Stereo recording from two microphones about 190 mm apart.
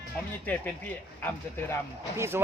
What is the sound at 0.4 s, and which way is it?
Speech, 10° left (ahead or behind).